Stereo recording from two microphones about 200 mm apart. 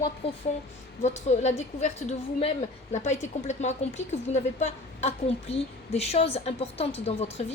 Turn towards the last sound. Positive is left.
turn(degrees=30)  # may be behind; listen again after turning